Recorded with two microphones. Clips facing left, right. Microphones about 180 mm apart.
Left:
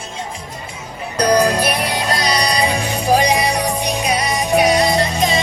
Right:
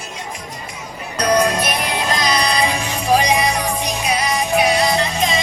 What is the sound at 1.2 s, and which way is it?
Music, 35° left (ahead or behind).